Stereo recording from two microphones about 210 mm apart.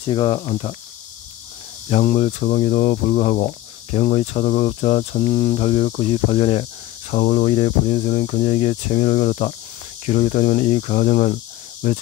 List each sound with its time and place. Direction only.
0.0 s speech: 25° left (ahead or behind)
1.9 s speech: 35° left (ahead or behind)